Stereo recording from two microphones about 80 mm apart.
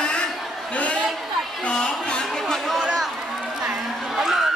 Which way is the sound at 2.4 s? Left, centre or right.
Centre.